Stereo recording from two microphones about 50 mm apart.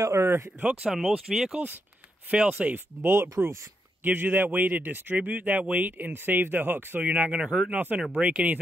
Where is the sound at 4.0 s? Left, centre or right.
Right.